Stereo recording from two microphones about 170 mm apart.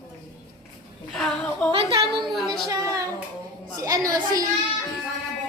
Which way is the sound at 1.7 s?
30° right (ahead or behind).